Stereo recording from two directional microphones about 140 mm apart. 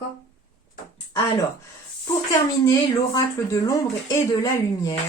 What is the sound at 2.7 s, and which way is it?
Speech, 25° left (ahead or behind).